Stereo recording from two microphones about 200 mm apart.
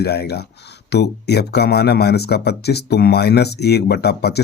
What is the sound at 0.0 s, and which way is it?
Speech, 55° left (ahead or behind).